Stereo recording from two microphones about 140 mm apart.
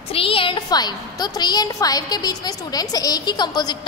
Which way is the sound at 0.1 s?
40° left (ahead or behind).